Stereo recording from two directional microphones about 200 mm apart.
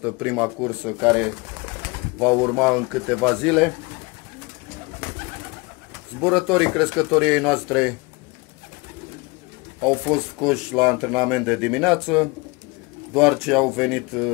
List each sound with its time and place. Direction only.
0.0 s speech: 5° right (ahead or behind)
2.1 s speech: 5° right (ahead or behind)
6.2 s speech: 5° right (ahead or behind)
9.8 s speech: 5° right (ahead or behind)